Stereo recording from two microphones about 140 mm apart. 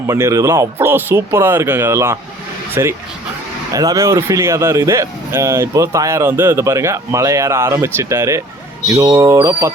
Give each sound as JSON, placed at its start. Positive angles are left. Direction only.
{"t": 0.1, "sound": "speech", "side_deg": -20}